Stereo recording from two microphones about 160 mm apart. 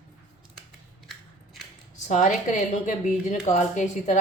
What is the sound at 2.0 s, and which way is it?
A woman's voice, 50° left (ahead or behind).